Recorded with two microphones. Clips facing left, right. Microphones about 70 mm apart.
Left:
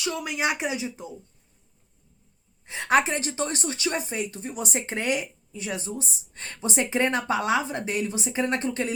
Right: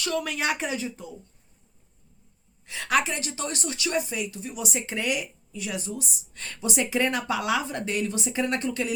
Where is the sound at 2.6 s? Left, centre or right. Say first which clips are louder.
Left 3 dB; left.